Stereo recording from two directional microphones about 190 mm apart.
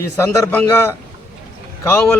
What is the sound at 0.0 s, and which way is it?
A man's voice, 15° left (ahead or behind).